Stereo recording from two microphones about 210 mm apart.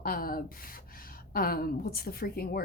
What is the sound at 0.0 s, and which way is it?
A woman's voice, 45° left (ahead or behind).